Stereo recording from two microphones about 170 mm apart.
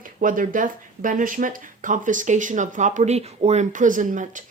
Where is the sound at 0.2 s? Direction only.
50° right (ahead or behind).